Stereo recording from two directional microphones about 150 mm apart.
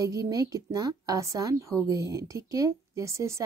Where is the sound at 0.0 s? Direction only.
25° right (ahead or behind).